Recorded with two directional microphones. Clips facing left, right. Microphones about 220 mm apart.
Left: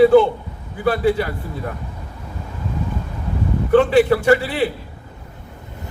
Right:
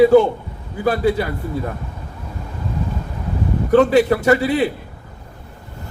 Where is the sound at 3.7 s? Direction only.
40° right (ahead or behind).